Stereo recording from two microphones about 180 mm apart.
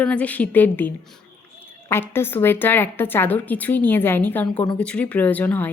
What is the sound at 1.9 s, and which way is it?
A woman's voice, 10° left (ahead or behind).